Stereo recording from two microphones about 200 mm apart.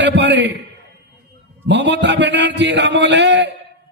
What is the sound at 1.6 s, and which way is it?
A man's voice, 60° right (ahead or behind).